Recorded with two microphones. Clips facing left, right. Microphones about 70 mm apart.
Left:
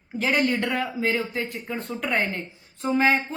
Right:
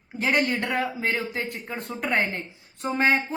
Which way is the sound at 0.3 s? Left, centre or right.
Right.